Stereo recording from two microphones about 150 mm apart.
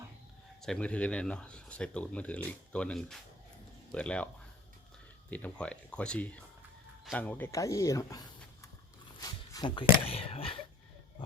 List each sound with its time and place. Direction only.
0.6 s speech: 5° left (ahead or behind)
5.3 s speech: 10° left (ahead or behind)
9.2 s a sound: 25° left (ahead or behind)
10.0 s speech: 40° left (ahead or behind)